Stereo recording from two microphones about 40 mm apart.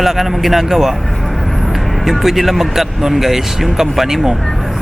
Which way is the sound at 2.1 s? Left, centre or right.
Centre.